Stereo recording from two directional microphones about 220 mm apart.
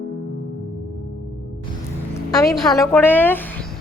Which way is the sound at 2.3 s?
15° left (ahead or behind).